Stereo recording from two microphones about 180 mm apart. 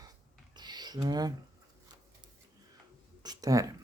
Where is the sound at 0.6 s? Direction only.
25° right (ahead or behind).